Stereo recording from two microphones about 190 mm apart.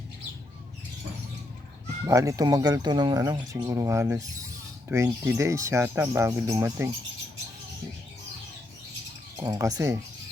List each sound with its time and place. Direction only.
2.0 s speech: 15° right (ahead or behind)
9.4 s speech: 20° right (ahead or behind)